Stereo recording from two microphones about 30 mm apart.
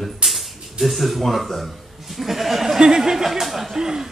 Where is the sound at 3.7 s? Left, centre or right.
Centre.